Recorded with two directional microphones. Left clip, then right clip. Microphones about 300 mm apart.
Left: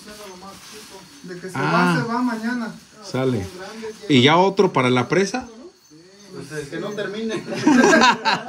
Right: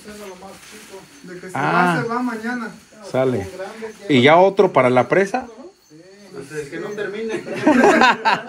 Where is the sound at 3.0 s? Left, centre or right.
Centre.